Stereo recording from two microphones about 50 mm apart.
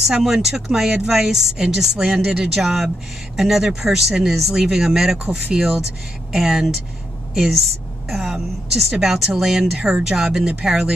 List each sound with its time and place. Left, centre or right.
0.1 s speech: centre
5.2 s speech: right
8.1 s a sound: centre
9.0 s speech: centre